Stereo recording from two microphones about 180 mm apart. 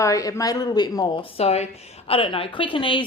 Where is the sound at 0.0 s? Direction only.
20° left (ahead or behind).